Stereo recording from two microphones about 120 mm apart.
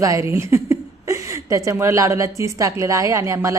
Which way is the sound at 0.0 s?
25° right (ahead or behind).